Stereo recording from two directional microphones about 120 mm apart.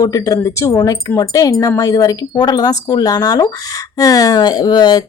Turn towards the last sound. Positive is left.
turn(degrees=35)  # may be behind; listen again after turning